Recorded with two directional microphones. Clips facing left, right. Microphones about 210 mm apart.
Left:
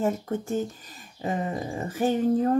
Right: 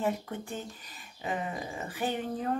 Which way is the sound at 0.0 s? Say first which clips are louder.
Left 5 dB; 45° left (ahead or behind).